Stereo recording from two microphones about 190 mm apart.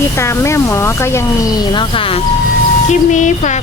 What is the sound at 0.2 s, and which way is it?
Speech, 15° left (ahead or behind).